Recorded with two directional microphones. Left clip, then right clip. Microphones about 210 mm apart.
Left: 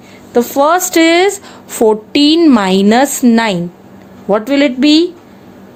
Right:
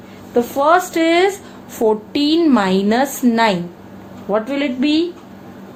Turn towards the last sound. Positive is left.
turn(degrees=55)  # may be behind; listen again after turning